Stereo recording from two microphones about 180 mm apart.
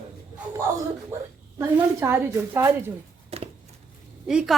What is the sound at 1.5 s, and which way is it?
A woman's voice, 15° right (ahead or behind).